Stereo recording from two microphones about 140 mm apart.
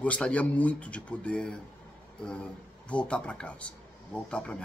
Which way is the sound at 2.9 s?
5° left (ahead or behind).